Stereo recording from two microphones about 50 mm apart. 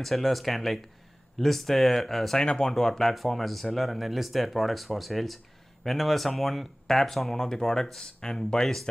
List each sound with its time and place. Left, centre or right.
0.0 s speech: centre
2.4 s speech: centre
2.7 s speech: centre